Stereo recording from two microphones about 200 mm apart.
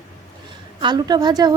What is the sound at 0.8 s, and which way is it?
Speech, 20° right (ahead or behind).